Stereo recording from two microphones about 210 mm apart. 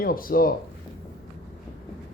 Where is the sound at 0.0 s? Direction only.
45° left (ahead or behind).